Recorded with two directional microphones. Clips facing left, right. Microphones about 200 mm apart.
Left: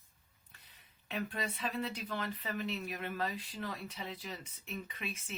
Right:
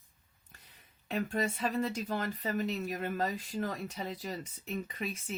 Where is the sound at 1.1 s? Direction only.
45° right (ahead or behind).